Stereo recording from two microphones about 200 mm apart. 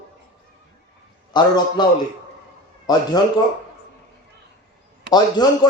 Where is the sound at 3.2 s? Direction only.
20° left (ahead or behind).